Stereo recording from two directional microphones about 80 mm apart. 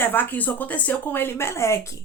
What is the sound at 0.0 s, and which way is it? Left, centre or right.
Speech, left.